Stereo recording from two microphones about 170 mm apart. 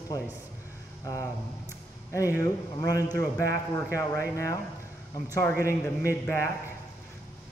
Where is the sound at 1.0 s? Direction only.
20° left (ahead or behind).